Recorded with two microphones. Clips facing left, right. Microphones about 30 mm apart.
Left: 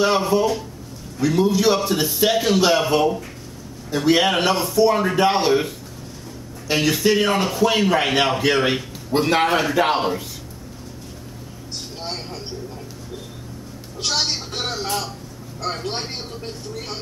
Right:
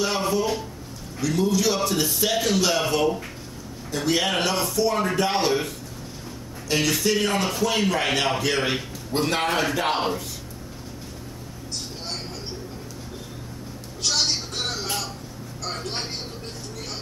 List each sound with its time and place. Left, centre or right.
0.2 s a man's voice: centre
3.9 s a man's voice: centre
6.7 s a man's voice: centre
12.0 s a sound: centre
14.0 s a woman's voice: centre